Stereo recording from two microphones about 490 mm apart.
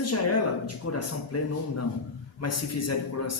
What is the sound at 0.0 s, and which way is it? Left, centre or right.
Speech, left.